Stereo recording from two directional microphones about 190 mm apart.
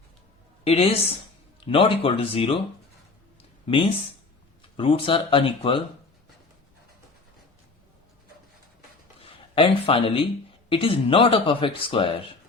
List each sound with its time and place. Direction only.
0.6 s speech: 30° left (ahead or behind)
4.8 s speech: 30° left (ahead or behind)
9.2 s speech: 30° left (ahead or behind)